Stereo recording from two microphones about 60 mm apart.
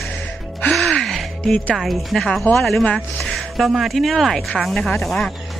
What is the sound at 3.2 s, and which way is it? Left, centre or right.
Speech, centre.